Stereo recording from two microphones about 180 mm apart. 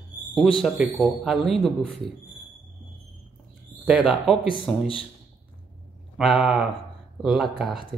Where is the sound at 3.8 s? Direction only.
5° right (ahead or behind).